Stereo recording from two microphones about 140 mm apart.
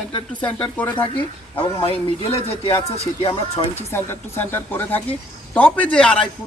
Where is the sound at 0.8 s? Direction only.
10° left (ahead or behind).